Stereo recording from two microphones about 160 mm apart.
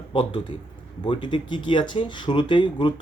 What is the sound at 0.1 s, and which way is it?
Speech, 30° left (ahead or behind).